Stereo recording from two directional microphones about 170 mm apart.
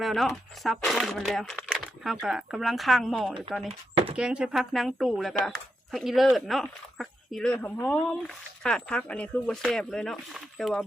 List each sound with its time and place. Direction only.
0.0 s speech: centre (ahead or behind)
3.7 s speech: 35° right (ahead or behind)
4.2 s speech: 5° right (ahead or behind)